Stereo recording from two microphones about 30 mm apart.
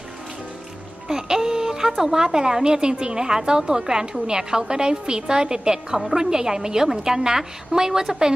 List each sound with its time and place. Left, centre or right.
1.0 s speech: centre
2.2 s a woman's voice: right